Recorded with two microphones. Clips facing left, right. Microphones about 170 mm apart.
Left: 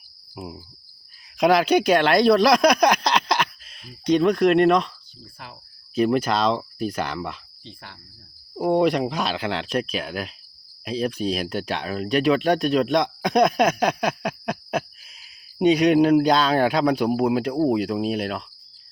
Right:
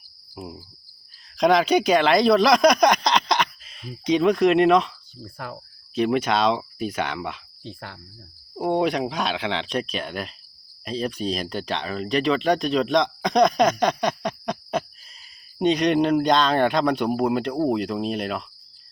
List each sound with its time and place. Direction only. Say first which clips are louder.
0.4 s speech: left 1 dB; 5° left (ahead or behind)
5.2 s insect: right 7 dB; 55° right (ahead or behind)
5.9 s speech: left 1 dB; centre (ahead or behind)
7.6 s insect: right 6 dB; 50° right (ahead or behind)
8.5 s speech: left 3 dB; centre (ahead or behind)